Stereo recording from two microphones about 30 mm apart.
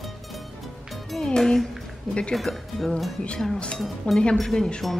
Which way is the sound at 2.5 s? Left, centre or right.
Left.